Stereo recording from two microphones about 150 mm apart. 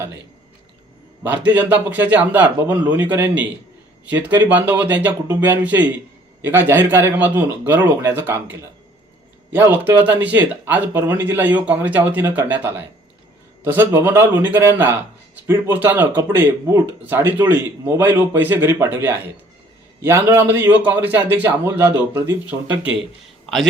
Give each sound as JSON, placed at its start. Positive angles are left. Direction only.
{"t": 1.2, "sound": "speech", "side_deg": -10}